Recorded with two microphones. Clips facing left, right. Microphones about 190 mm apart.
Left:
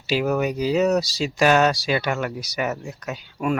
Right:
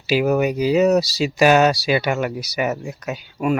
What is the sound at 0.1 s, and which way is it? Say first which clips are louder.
Speech: right 4 dB; 5° right (ahead or behind).